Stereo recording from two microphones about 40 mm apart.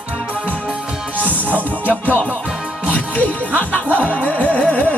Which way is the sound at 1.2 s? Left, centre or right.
Left.